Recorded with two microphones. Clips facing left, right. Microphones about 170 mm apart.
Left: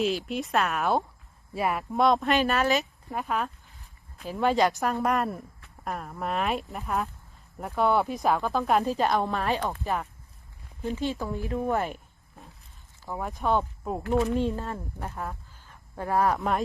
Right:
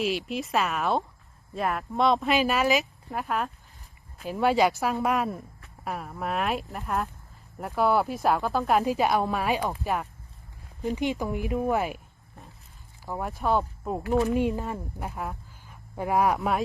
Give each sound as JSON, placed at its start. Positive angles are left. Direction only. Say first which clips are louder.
{"t": 0.3, "sound": "speech", "louder": "even", "side_deg": 0}
{"t": 10.9, "sound": "speech", "louder": "right 2 dB", "side_deg": -15}
{"t": 11.6, "sound": "speech", "louder": "right 1 dB", "side_deg": -5}
{"t": 13.1, "sound": "speech", "louder": "even", "side_deg": -5}
{"t": 14.3, "sound": "speech", "louder": "right 2 dB", "side_deg": -15}